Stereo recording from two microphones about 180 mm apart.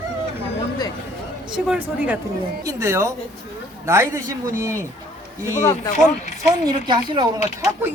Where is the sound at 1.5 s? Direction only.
5° right (ahead or behind).